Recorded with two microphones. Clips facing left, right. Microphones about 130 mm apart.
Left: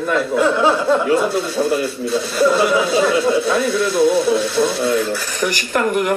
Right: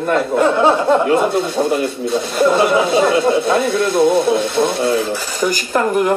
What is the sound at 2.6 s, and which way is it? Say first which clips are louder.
Speech: right 2 dB; 50° right (ahead or behind).